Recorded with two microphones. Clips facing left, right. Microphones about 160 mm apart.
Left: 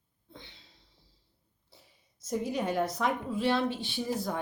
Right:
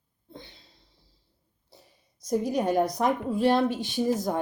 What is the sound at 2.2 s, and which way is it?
Speech, 40° right (ahead or behind).